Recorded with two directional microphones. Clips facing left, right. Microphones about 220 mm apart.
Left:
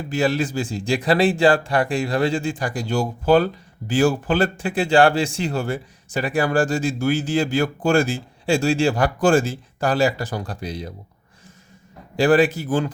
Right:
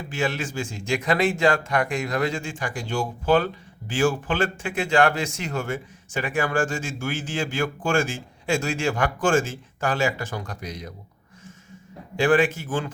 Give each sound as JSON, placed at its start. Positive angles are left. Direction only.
{"t": 0.1, "sound": "a man's voice", "side_deg": 35}
{"t": 12.1, "sound": "a man's voice", "side_deg": 35}